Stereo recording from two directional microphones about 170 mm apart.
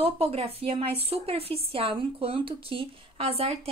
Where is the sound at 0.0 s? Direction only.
35° right (ahead or behind).